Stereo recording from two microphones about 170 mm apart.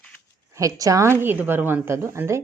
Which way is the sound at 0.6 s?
20° right (ahead or behind).